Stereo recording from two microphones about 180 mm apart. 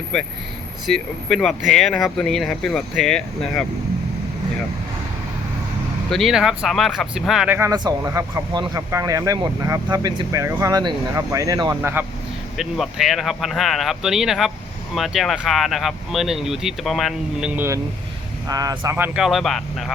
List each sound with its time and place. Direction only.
0.1 s speech: 5° left (ahead or behind)
6.1 s speech: centre (ahead or behind)
18.4 s speech: 20° right (ahead or behind); by 19.8 s centre (ahead or behind)